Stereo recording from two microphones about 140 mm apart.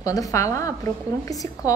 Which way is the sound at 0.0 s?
25° left (ahead or behind).